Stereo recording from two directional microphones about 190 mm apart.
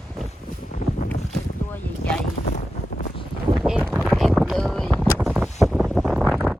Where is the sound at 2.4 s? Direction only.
40° left (ahead or behind).